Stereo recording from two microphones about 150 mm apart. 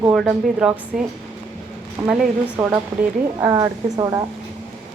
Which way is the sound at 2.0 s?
5° right (ahead or behind).